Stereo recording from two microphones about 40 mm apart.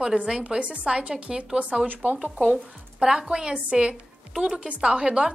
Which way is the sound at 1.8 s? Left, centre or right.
Right.